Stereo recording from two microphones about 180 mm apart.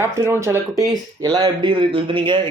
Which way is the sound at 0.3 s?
15° right (ahead or behind).